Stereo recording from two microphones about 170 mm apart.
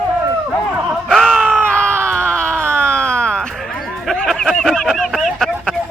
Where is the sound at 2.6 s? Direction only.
15° right (ahead or behind).